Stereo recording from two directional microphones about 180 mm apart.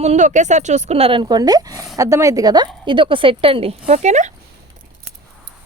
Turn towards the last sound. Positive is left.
turn(degrees=-40)  # may be behind; listen again after turning